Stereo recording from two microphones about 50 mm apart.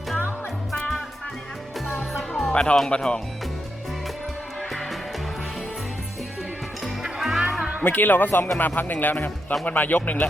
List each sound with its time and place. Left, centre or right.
2.5 s speech: left
4.7 s music: centre
6.8 s music: centre
7.8 s speech: left